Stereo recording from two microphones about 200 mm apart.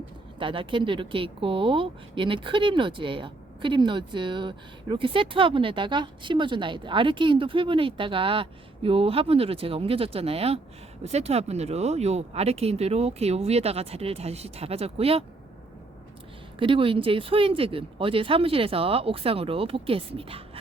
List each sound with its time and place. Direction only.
0.3 s speech: 25° right (ahead or behind)
16.6 s speech: 25° right (ahead or behind)